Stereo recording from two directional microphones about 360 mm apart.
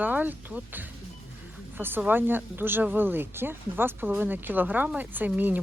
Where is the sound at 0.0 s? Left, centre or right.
Centre.